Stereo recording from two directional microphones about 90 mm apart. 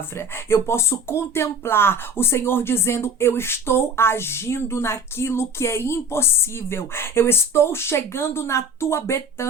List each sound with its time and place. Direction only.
0.2 s speech: 30° left (ahead or behind)